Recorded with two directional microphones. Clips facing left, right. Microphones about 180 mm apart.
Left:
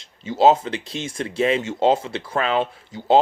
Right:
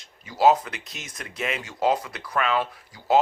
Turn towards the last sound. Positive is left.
turn(degrees=25)  # may be behind; listen again after turning